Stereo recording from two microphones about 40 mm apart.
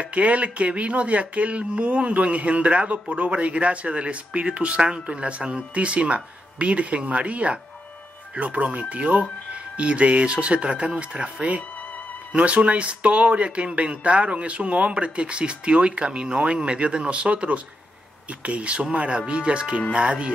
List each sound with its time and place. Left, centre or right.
0.0 s speech: right